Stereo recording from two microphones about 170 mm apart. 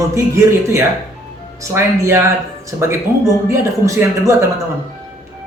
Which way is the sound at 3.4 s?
20° right (ahead or behind).